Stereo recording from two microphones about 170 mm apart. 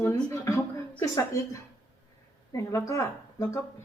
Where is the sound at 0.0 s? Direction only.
15° left (ahead or behind).